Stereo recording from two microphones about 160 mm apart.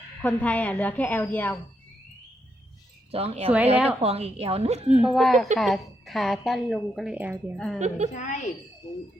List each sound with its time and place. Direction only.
0.2 s a woman's voice: 10° left (ahead or behind)
3.1 s a woman's voice: 40° right (ahead or behind)
4.9 s a woman's voice: 5° right (ahead or behind)
7.8 s a woman's voice: 45° right (ahead or behind)
8.1 s speech: 50° left (ahead or behind)